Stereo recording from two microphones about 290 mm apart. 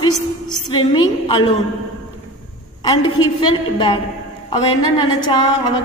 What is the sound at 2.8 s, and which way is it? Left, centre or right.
A woman's voice, centre.